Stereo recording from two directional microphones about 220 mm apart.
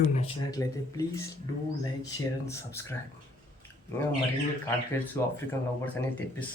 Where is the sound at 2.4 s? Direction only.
10° left (ahead or behind).